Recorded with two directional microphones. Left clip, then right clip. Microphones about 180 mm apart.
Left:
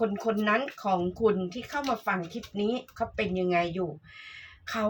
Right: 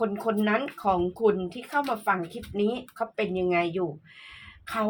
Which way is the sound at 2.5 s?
30° right (ahead or behind).